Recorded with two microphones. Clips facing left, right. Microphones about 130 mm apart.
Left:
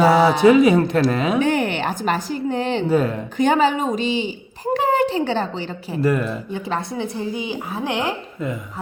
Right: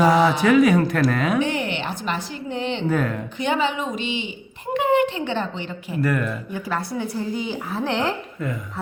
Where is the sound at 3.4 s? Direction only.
40° left (ahead or behind).